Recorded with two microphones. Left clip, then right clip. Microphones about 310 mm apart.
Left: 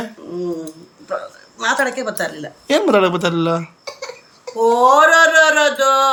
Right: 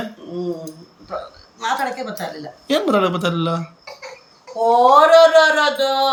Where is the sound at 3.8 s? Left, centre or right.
Left.